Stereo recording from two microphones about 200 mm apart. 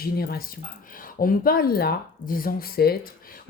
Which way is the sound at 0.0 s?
50° left (ahead or behind).